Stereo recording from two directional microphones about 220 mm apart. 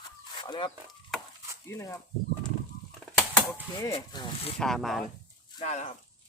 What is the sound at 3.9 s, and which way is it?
Speech, 25° left (ahead or behind).